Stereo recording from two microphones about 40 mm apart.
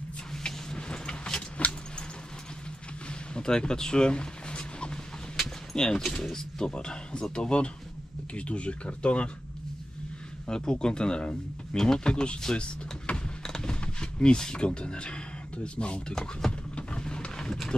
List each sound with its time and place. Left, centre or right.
0.4 s vehicle: centre
3.1 s a sound: left
5.8 s speech: centre
10.5 s speech: centre
12.1 s speech: left
12.5 s power windows: left
13.7 s speech: left
16.7 s vehicle: left